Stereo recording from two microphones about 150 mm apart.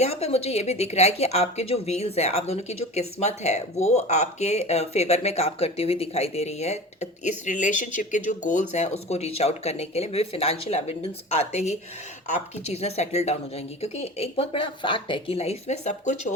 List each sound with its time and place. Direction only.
0.0 s speech: 45° left (ahead or behind)